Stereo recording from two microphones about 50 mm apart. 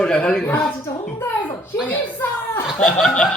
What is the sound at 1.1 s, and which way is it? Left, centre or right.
Speech, left.